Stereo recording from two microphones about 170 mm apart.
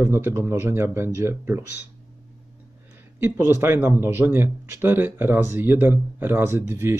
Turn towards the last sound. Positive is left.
turn(degrees=-15)  # may be behind; listen again after turning